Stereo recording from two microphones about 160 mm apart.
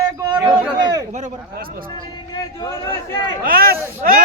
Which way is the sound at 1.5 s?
65° right (ahead or behind).